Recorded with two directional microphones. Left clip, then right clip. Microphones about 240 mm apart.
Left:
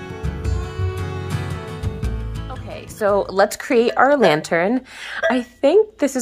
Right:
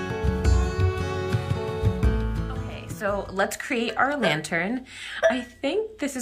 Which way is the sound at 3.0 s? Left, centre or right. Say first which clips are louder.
Left 9 dB; left.